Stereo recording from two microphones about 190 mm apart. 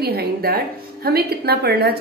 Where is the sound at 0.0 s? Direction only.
55° right (ahead or behind).